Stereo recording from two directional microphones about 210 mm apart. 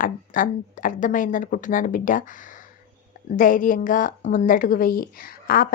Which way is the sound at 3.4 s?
40° left (ahead or behind).